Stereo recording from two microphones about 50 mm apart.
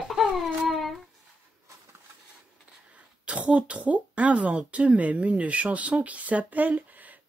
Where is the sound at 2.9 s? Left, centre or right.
Right.